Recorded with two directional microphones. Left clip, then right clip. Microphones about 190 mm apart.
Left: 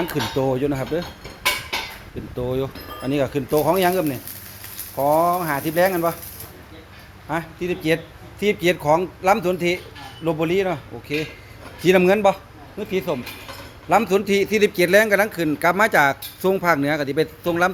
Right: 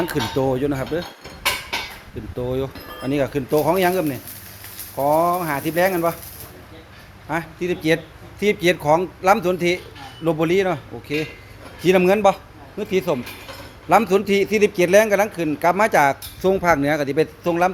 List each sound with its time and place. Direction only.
0.0 s speech: 10° right (ahead or behind)
2.4 s a man's voice: centre (ahead or behind)
7.3 s a man's voice: centre (ahead or behind)
7.6 s speech: 15° right (ahead or behind)
11.8 s a man's voice: 5° left (ahead or behind)
12.8 s speech: 25° right (ahead or behind)
13.9 s a man's voice: 10° right (ahead or behind)